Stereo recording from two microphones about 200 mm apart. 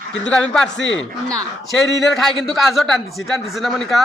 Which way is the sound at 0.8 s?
70° left (ahead or behind).